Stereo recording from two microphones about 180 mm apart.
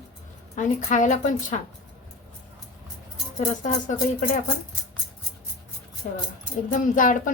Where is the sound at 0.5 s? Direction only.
45° left (ahead or behind).